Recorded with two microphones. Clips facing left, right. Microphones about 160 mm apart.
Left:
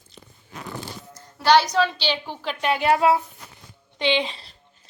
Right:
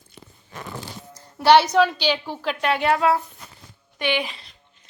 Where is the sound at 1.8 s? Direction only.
10° right (ahead or behind).